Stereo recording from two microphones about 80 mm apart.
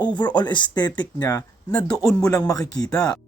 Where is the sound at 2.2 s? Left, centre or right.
Left.